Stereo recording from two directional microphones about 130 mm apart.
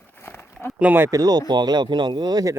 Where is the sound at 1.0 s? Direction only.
30° right (ahead or behind).